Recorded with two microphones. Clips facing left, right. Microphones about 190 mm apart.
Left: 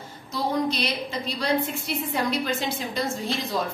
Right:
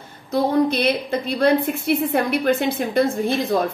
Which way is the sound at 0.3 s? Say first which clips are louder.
Right 7 dB; 55° right (ahead or behind).